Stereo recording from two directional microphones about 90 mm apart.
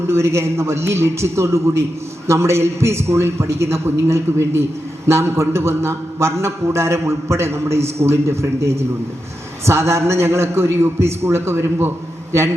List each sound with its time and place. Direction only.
0.1 s a man's voice: 30° right (ahead or behind)